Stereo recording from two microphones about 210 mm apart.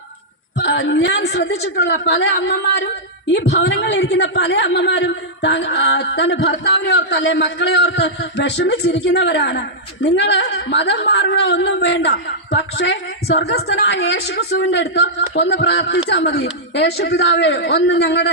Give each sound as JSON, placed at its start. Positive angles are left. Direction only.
{"t": 0.6, "sound": "a woman's voice", "side_deg": 55}